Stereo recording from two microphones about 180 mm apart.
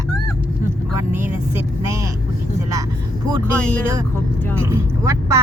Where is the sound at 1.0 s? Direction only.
15° right (ahead or behind).